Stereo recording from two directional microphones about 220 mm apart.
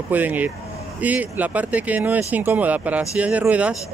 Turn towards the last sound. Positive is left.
turn(degrees=-5)  # may be behind; listen again after turning